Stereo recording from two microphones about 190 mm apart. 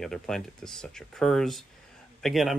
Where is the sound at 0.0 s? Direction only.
5° left (ahead or behind).